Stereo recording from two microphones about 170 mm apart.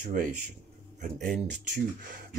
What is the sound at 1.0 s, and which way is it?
Speech, 50° right (ahead or behind).